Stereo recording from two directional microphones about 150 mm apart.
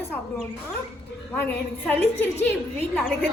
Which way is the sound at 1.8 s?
10° left (ahead or behind).